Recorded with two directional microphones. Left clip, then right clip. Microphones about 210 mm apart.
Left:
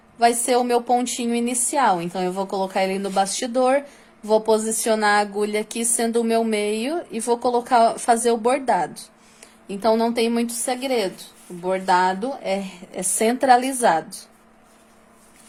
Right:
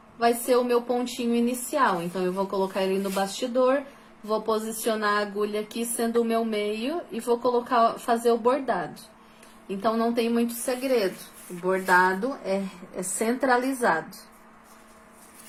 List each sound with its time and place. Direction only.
0.2 s a woman's voice: 55° left (ahead or behind)